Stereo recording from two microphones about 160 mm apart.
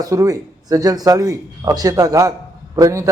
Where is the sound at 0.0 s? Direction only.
20° right (ahead or behind).